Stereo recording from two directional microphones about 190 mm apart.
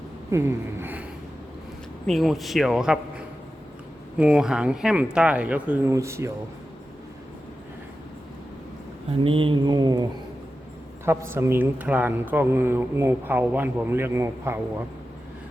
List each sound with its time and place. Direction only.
0.3 s a sound: 15° right (ahead or behind)
2.0 s a man's voice: centre (ahead or behind)
9.2 s mantra: 30° right (ahead or behind)
11.0 s speech: 10° right (ahead or behind)